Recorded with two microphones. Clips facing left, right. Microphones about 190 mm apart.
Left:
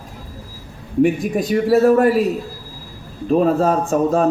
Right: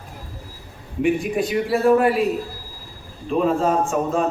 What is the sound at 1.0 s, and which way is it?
A man's voice, 40° left (ahead or behind).